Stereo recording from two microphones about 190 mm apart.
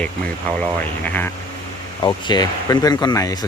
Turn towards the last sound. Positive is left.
turn(degrees=20)  # may be behind; listen again after turning